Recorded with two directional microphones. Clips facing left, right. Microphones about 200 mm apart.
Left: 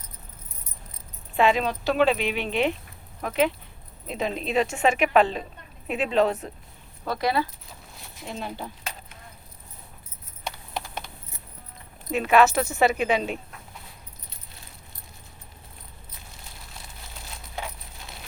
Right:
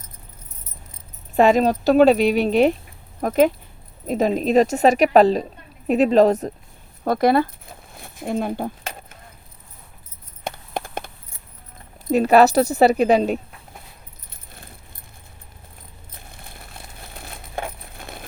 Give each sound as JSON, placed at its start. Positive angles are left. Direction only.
{"t": 1.4, "sound": "a woman's voice", "side_deg": -45}
{"t": 10.4, "sound": "a sound", "side_deg": -50}
{"t": 12.1, "sound": "a woman's voice", "side_deg": -40}
{"t": 16.1, "sound": "crushing", "side_deg": -55}